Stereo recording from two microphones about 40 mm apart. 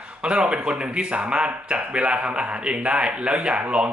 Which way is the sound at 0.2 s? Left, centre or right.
Right.